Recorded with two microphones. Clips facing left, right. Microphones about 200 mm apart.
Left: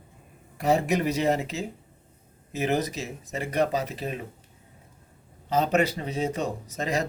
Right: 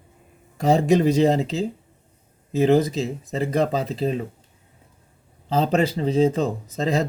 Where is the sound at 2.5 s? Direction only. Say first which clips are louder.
Right 9 dB; 30° right (ahead or behind).